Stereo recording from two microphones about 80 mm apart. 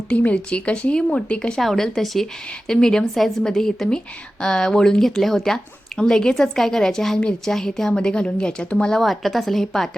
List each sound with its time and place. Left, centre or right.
0.1 s a woman's voice: centre